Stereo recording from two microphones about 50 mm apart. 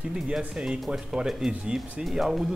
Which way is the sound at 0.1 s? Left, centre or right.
Centre.